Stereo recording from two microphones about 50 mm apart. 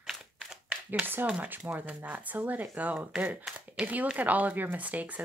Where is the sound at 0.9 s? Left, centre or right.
Right.